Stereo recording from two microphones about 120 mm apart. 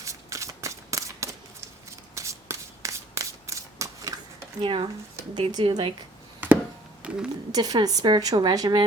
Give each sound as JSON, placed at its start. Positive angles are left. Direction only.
{"t": 0.0, "sound": "shuffling cards", "side_deg": -25}
{"t": 4.6, "sound": "a woman's voice", "side_deg": -45}
{"t": 6.4, "sound": "a sound", "side_deg": -15}
{"t": 7.5, "sound": "a woman's voice", "side_deg": -35}